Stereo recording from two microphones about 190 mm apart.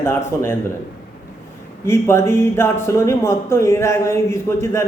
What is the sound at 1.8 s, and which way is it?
Speech, 15° left (ahead or behind).